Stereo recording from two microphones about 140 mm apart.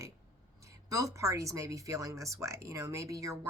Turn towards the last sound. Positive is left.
turn(degrees=-25)  # may be behind; listen again after turning